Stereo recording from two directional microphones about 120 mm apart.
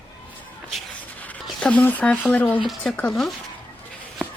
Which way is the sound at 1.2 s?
10° left (ahead or behind).